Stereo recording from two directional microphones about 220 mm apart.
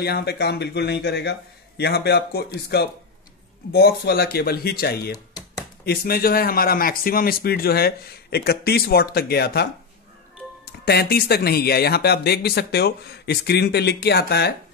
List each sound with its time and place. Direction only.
0.0 s speech: 45° left (ahead or behind)